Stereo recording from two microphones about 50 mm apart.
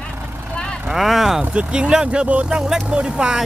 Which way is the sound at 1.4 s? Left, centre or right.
Right.